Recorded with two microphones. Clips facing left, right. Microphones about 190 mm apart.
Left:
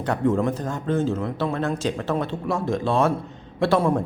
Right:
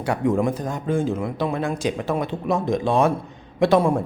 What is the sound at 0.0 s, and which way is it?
A man's voice, 10° right (ahead or behind).